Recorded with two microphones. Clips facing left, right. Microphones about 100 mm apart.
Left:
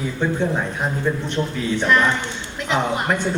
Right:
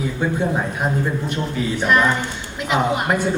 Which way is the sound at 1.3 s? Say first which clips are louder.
Even; 10° right (ahead or behind).